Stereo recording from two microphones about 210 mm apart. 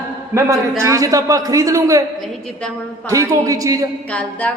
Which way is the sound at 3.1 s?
15° right (ahead or behind).